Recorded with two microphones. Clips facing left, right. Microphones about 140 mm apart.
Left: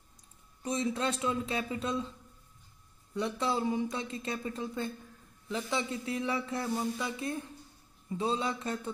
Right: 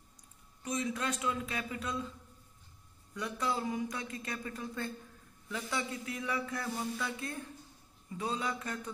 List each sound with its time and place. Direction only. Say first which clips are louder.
0.6 s speech: left 4 dB; 30° left (ahead or behind)
3.2 s speech: left 4 dB; 25° left (ahead or behind)